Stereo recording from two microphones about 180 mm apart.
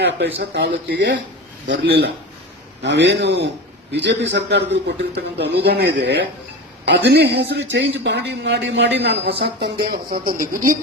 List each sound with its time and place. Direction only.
0.3 s a man's voice: 65° right (ahead or behind); by 1.2 s 85° right
1.7 s a man's voice: 70° right (ahead or behind); by 10.8 s 50° right (ahead or behind)